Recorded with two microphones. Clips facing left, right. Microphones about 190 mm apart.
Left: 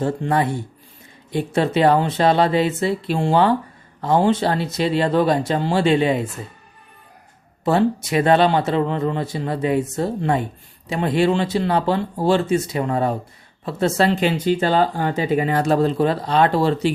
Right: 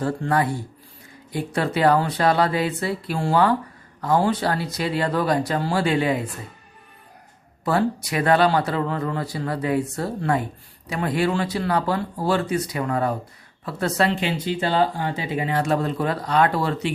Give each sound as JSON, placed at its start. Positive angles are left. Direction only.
{"t": 0.0, "sound": "speech", "side_deg": 20}
{"t": 7.6, "sound": "speech", "side_deg": 25}
{"t": 14.2, "sound": "speech", "side_deg": 45}